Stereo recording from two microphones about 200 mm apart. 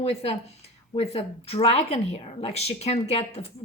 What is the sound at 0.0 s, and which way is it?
A woman's voice, 30° left (ahead or behind).